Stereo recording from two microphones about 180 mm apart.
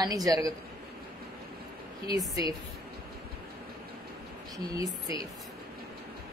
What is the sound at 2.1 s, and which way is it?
Speech, 20° right (ahead or behind).